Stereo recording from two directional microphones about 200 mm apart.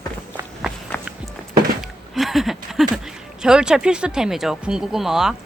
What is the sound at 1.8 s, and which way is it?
Speech, centre (ahead or behind).